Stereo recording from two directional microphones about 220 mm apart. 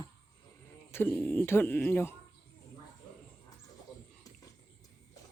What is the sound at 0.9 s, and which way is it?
Speech, 10° left (ahead or behind).